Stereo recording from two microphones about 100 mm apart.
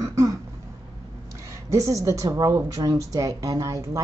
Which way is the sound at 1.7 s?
30° right (ahead or behind).